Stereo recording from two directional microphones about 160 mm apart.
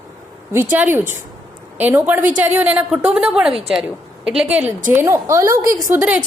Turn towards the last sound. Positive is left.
turn(degrees=-20)  # may be behind; listen again after turning